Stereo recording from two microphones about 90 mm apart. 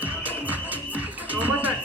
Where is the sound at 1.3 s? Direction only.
20° right (ahead or behind).